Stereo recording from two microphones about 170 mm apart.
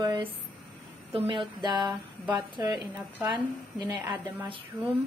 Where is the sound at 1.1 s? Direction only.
35° right (ahead or behind); by 2.7 s 20° right (ahead or behind).